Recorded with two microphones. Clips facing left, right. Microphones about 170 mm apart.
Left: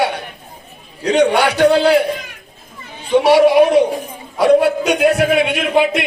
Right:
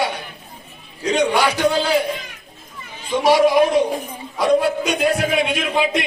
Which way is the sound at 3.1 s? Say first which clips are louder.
Left 4 dB; 65° left (ahead or behind).